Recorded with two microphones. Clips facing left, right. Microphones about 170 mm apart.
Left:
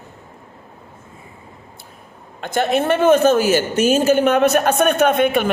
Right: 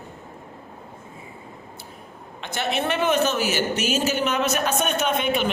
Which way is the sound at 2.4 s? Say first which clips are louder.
Left 8 dB; 50° left (ahead or behind).